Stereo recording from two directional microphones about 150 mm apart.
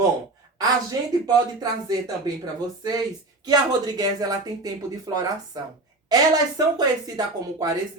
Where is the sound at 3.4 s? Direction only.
25° right (ahead or behind).